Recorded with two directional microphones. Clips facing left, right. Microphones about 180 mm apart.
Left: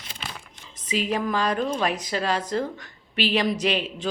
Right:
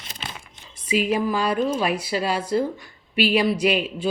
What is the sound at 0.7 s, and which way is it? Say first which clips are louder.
A woman's voice: right 4 dB; 10° right (ahead or behind).